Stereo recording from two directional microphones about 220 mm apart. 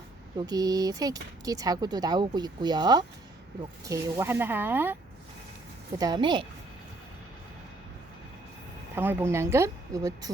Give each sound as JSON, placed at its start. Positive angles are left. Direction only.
{"t": 0.3, "sound": "speech", "side_deg": -15}
{"t": 6.0, "sound": "a woman's voice", "side_deg": -20}
{"t": 9.0, "sound": "speech", "side_deg": -10}